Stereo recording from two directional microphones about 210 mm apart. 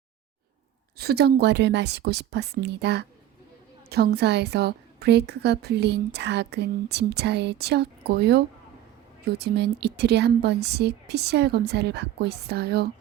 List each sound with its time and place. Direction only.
0.9 s a woman's voice: 50° right (ahead or behind)